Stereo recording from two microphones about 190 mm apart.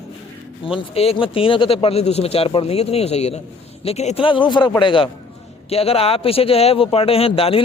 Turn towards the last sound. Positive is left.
turn(degrees=30)  # may be behind; listen again after turning